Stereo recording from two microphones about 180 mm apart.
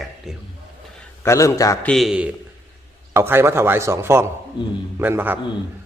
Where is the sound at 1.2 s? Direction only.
15° left (ahead or behind).